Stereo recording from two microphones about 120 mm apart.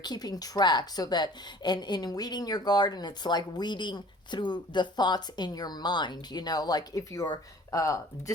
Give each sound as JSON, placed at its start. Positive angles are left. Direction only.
{"t": 0.0, "sound": "a woman's voice", "side_deg": 35}